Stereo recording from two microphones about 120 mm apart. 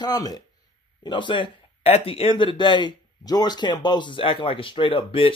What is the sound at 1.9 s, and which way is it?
Speech, 55° left (ahead or behind).